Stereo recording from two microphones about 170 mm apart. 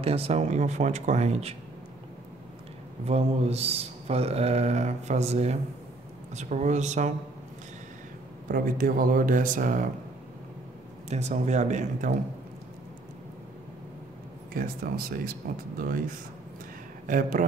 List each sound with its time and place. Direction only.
0.0 s speech: 35° right (ahead or behind)
3.1 s speech: 40° right (ahead or behind)
8.5 s speech: 55° right (ahead or behind)
11.1 s speech: 40° right (ahead or behind)
14.5 s speech: 55° right (ahead or behind)